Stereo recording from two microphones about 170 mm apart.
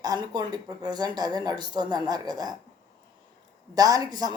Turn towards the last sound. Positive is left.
turn(degrees=-25)  # may be behind; listen again after turning